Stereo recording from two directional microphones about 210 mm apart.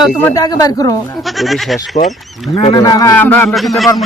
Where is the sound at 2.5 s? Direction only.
30° left (ahead or behind).